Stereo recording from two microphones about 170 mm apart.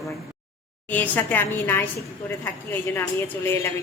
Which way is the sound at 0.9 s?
10° left (ahead or behind).